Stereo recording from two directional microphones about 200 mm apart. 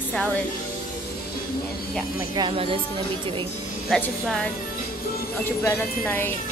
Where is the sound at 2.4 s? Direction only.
25° right (ahead or behind).